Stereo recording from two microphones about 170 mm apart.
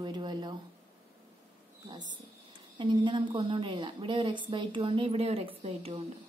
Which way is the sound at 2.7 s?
30° right (ahead or behind).